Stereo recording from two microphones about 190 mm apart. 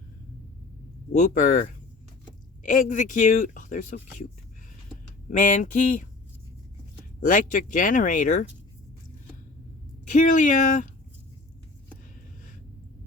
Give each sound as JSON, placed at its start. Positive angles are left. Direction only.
{"t": 1.1, "sound": "speech", "side_deg": 40}
{"t": 5.3, "sound": "speech", "side_deg": 40}
{"t": 7.2, "sound": "speech", "side_deg": 45}
{"t": 10.1, "sound": "speech", "side_deg": 40}